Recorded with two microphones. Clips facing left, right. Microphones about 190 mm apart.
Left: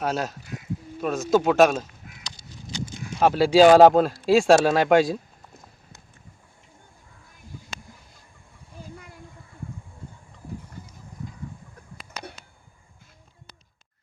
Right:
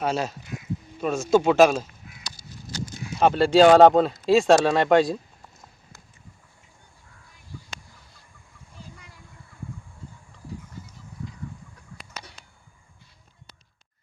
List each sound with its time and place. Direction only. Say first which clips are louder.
0.0 s speech: right 1 dB; centre (ahead or behind)
3.2 s speech: even; 5° left (ahead or behind)
8.8 s a sound: left 5 dB; 50° left (ahead or behind)